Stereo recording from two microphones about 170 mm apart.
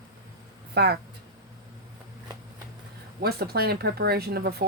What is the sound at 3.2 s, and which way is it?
A woman's voice, 70° right (ahead or behind).